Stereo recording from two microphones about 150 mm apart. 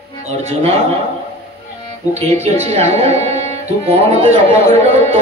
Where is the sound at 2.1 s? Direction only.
45° right (ahead or behind).